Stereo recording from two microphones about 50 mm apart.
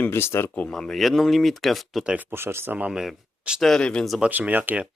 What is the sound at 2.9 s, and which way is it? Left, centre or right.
Speech, centre.